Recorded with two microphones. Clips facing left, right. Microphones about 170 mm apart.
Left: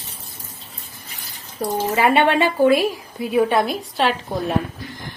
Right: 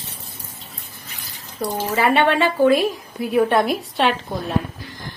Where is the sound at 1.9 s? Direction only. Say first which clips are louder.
Even; 15° left (ahead or behind).